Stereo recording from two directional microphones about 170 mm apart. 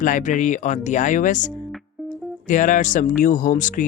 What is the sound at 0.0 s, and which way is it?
Speech, 50° left (ahead or behind).